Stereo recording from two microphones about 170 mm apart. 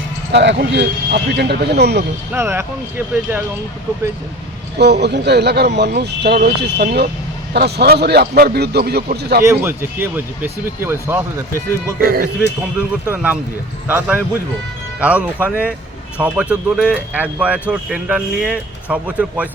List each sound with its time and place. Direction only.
0.3 s speech: 90° right
2.3 s speech: 15° right (ahead or behind)
4.8 s speech: 80° right
9.4 s speech: 15° right (ahead or behind)
11.9 s speech: 60° right (ahead or behind)
13.1 s speech: 10° right (ahead or behind)